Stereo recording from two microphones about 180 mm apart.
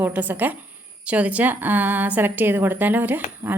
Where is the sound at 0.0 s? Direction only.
10° right (ahead or behind).